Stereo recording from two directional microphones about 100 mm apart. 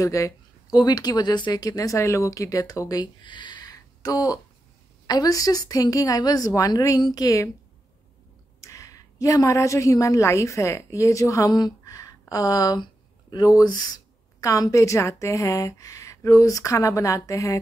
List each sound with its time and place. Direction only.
0.0 s a woman's voice: 35° left (ahead or behind)
8.5 s a woman's voice: 30° left (ahead or behind)